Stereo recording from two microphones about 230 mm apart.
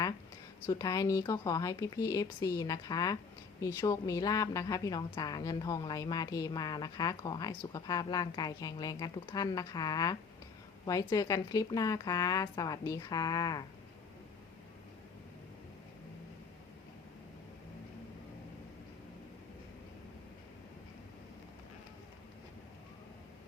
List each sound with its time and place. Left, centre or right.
0.7 s a woman's voice: centre